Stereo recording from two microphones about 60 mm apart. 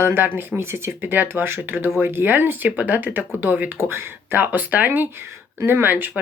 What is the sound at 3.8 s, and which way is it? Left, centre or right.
Speech, right.